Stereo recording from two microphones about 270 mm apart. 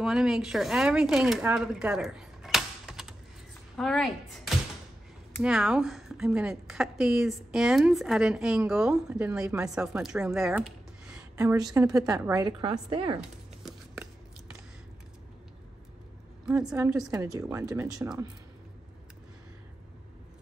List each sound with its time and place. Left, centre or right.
0.0 s a woman's voice: centre
5.4 s a woman's voice: centre
13.6 s a sound: centre
16.4 s a woman's voice: centre